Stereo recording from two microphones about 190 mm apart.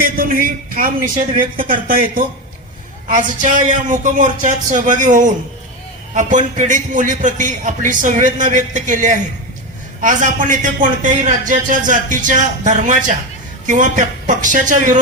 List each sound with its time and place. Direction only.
0.0 s a man's voice: 50° right (ahead or behind)